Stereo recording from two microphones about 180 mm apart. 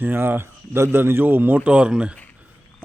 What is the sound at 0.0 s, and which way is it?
A man's voice, 10° right (ahead or behind).